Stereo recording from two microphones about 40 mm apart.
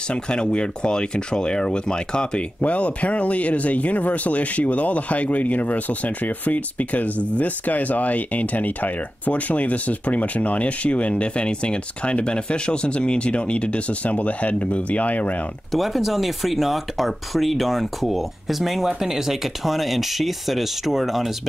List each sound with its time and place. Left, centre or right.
0.1 s speech: left
2.6 s speech: left
15.7 s speech: centre